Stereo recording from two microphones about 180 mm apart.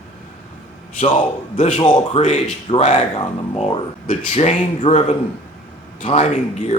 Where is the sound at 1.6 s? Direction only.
40° left (ahead or behind).